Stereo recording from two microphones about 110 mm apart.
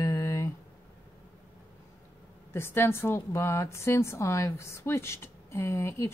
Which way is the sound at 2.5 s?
20° left (ahead or behind).